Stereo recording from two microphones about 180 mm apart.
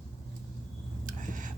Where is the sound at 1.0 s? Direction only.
45° right (ahead or behind).